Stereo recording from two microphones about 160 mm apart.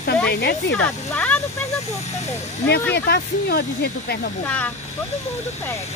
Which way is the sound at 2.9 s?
90° left.